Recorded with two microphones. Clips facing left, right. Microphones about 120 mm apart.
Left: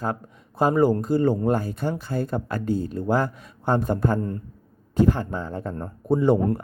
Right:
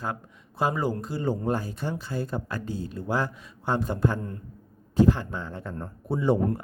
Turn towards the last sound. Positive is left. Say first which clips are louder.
# left 5 dB
turn(degrees=55)  # may be behind; listen again after turning